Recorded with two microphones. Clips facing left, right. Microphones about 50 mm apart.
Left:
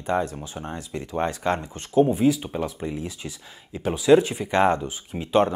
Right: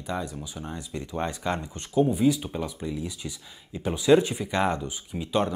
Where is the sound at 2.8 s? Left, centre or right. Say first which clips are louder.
Left 2 dB; left.